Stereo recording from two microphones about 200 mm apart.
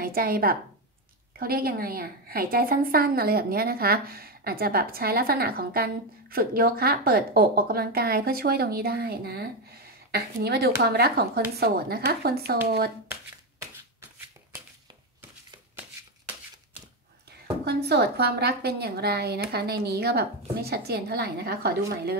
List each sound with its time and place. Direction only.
0.0 s a woman's voice: 45° right (ahead or behind)
17.6 s a woman's voice: 55° right (ahead or behind)